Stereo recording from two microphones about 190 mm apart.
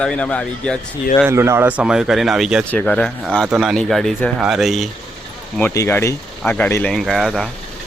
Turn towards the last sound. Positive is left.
turn(degrees=0)  # may be behind; listen again after turning